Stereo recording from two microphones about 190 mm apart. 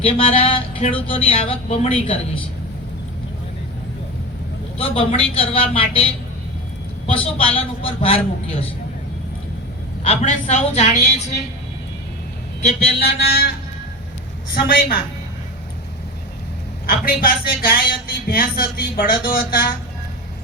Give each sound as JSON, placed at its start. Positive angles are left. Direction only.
{"t": 0.0, "sound": "speech", "side_deg": 30}
{"t": 4.8, "sound": "speech", "side_deg": 30}
{"t": 7.1, "sound": "speech", "side_deg": 30}
{"t": 10.0, "sound": "a woman's voice", "side_deg": 35}
{"t": 13.1, "sound": "a sound", "side_deg": 55}
{"t": 14.5, "sound": "speech", "side_deg": 50}
{"t": 16.8, "sound": "speech", "side_deg": 50}